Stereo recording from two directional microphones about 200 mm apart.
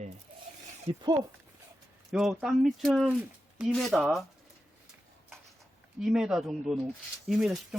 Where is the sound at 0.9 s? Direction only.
20° right (ahead or behind).